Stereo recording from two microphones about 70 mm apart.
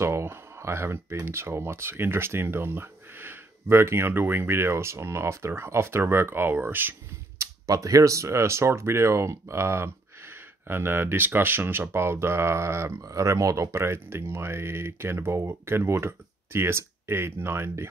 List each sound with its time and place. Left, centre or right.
0.0 s speech: right
7.3 s speech: right